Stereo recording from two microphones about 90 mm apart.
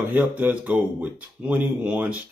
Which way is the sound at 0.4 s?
15° right (ahead or behind).